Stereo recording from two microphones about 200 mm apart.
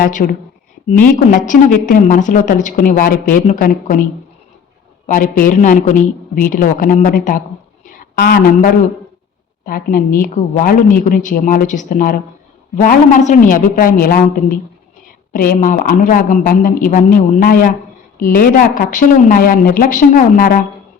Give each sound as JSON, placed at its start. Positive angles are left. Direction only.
{"t": 0.0, "sound": "a woman's voice", "side_deg": 45}
{"t": 1.5, "sound": "a woman's voice", "side_deg": 40}
{"t": 5.0, "sound": "a woman's voice", "side_deg": 40}
{"t": 7.9, "sound": "a sound", "side_deg": 50}
{"t": 9.6, "sound": "a woman's voice", "side_deg": 45}